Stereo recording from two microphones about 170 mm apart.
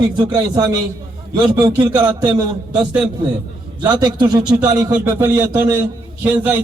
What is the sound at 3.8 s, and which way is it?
A man's voice, 25° right (ahead or behind).